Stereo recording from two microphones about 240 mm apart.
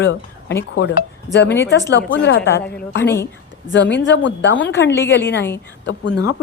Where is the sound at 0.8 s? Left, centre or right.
Left.